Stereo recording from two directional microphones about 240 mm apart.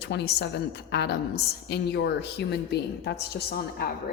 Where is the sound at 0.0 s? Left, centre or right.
Left.